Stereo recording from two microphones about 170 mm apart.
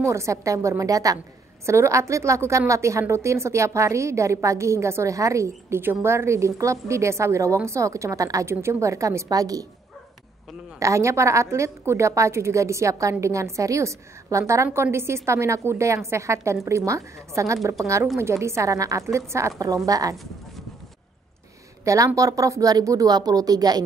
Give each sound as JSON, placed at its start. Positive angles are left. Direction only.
{"t": 0.0, "sound": "a woman's voice", "side_deg": -15}
{"t": 10.8, "sound": "a woman's voice", "side_deg": -15}
{"t": 21.8, "sound": "speech", "side_deg": -20}